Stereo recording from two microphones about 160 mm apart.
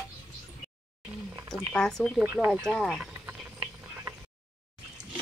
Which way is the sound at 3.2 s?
15° right (ahead or behind).